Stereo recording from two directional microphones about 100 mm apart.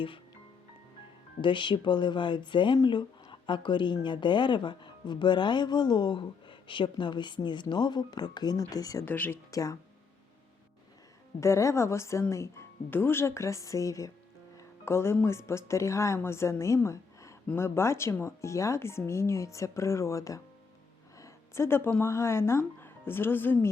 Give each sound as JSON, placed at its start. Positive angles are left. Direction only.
{"t": 1.4, "sound": "a woman's voice", "side_deg": 55}
{"t": 9.0, "sound": "speech", "side_deg": 20}
{"t": 9.5, "sound": "speech", "side_deg": 35}
{"t": 11.3, "sound": "speech", "side_deg": 30}
{"t": 21.2, "sound": "a sound", "side_deg": 30}
{"t": 22.0, "sound": "speech", "side_deg": 25}